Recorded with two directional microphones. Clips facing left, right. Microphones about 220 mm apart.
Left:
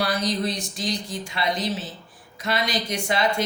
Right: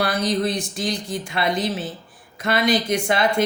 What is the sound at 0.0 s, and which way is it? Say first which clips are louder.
Speech: right 3 dB; 55° right (ahead or behind).